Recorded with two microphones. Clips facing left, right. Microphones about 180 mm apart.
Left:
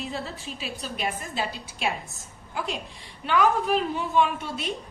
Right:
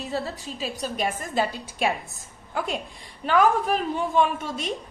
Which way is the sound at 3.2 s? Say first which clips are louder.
Right 2 dB; 45° right (ahead or behind).